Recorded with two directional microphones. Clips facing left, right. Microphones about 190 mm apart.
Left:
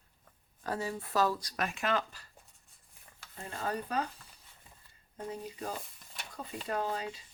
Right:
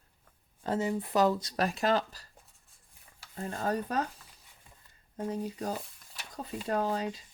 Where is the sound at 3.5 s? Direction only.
40° right (ahead or behind).